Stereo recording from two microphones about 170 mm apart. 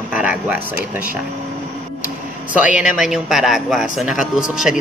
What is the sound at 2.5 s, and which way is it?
A man's voice, 10° right (ahead or behind).